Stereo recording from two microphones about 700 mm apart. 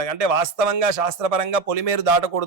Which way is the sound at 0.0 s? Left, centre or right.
Right.